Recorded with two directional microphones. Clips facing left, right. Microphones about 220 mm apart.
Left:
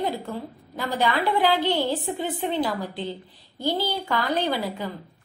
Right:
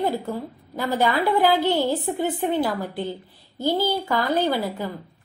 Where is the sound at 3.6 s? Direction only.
10° right (ahead or behind).